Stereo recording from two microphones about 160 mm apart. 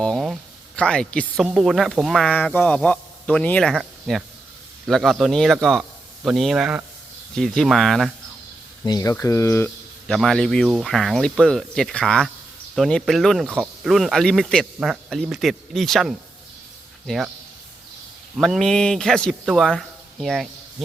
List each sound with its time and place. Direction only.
0.0 s a sound: centre (ahead or behind)
0.8 s speech: 5° left (ahead or behind)
8.8 s speech: 25° left (ahead or behind)
10.1 s speech: centre (ahead or behind)
18.3 s speech: centre (ahead or behind)